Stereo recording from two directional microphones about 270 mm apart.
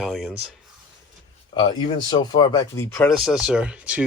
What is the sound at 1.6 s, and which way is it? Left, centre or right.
Speech, centre.